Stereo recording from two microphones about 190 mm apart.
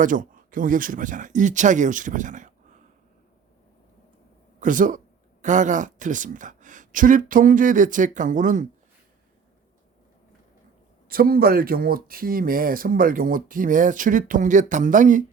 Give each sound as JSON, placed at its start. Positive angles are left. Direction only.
{"t": 0.0, "sound": "speech", "side_deg": -45}
{"t": 4.6, "sound": "speech", "side_deg": -45}
{"t": 11.1, "sound": "speech", "side_deg": -50}